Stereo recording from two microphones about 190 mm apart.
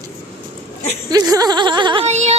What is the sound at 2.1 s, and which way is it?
Speech, 35° right (ahead or behind).